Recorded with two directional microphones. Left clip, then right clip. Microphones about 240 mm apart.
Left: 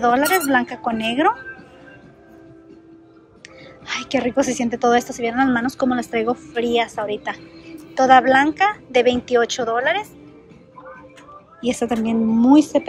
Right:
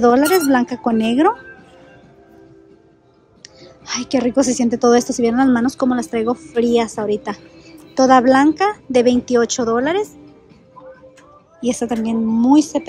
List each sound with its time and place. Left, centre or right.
0.0 s a woman's voice: right
3.4 s a woman's voice: centre
11.6 s a woman's voice: centre